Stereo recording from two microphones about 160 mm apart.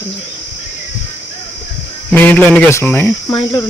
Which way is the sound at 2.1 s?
10° left (ahead or behind).